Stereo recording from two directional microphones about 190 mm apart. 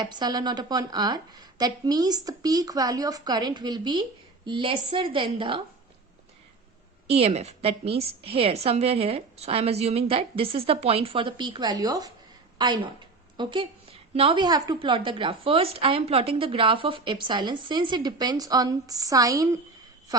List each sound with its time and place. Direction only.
0.0 s a woman's voice: 20° right (ahead or behind)
7.1 s a woman's voice: 35° right (ahead or behind); by 19.5 s 20° right (ahead or behind)